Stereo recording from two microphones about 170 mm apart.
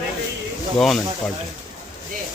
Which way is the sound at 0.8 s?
Centre (ahead or behind).